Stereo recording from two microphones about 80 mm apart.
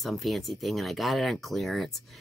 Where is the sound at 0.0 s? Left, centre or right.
Centre.